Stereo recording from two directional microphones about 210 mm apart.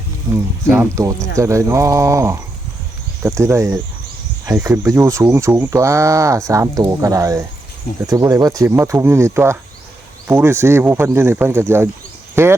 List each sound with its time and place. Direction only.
0.3 s speech: 10° right (ahead or behind)